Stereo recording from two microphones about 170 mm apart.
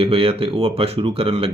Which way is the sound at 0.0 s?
30° right (ahead or behind).